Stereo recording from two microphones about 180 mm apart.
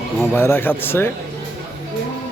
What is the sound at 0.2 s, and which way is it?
Speech, 10° left (ahead or behind).